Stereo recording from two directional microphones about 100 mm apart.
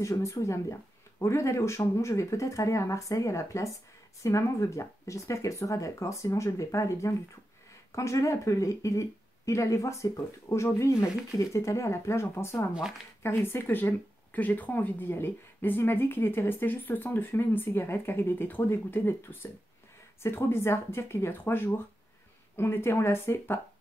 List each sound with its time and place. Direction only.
0.0 s speech: 30° left (ahead or behind)
20.2 s speech: 25° left (ahead or behind)